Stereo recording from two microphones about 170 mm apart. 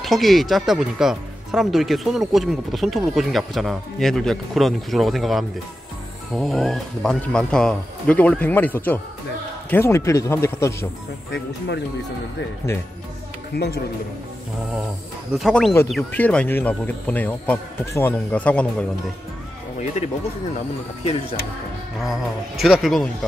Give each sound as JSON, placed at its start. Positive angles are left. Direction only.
{"t": 0.0, "sound": "speech", "side_deg": 0}
{"t": 11.3, "sound": "speech", "side_deg": 90}
{"t": 13.5, "sound": "a man's voice", "side_deg": 75}
{"t": 15.3, "sound": "speech", "side_deg": 0}
{"t": 21.0, "sound": "speech", "side_deg": 40}
{"t": 22.0, "sound": "speech", "side_deg": 0}